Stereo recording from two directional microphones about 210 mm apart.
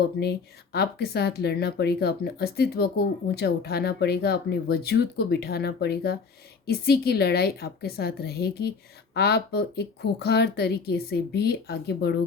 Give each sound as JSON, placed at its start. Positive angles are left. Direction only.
{"t": 0.2, "sound": "speech", "side_deg": 50}